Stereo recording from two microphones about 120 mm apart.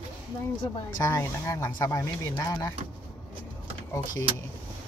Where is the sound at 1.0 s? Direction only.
25° left (ahead or behind).